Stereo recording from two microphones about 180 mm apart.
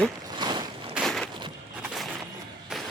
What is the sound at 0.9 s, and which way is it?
Walk, centre (ahead or behind).